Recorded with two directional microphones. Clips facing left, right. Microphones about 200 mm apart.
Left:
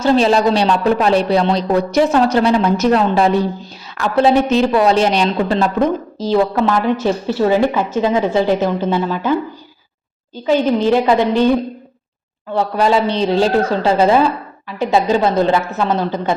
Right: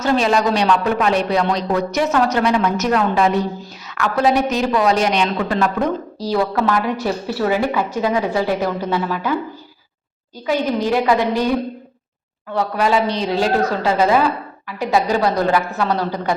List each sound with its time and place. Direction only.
0.0 s a woman's voice: 30° left (ahead or behind)
10.3 s a woman's voice: 25° left (ahead or behind)
12.5 s a woman's voice: 30° left (ahead or behind)